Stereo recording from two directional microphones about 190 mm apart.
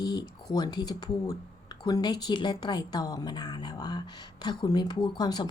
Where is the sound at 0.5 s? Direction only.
20° left (ahead or behind).